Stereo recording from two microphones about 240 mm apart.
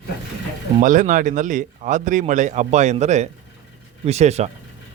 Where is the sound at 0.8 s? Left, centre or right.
Right.